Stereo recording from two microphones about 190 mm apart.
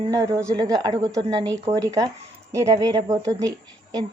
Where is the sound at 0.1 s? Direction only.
15° right (ahead or behind).